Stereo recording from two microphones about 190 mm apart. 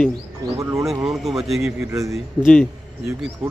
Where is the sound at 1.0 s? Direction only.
Centre (ahead or behind).